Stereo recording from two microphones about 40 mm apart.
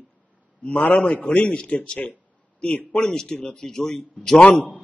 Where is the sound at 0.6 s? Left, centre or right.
Left.